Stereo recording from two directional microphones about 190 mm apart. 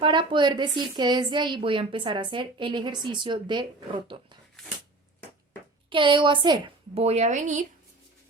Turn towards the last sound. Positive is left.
turn(degrees=-40)  # may be behind; listen again after turning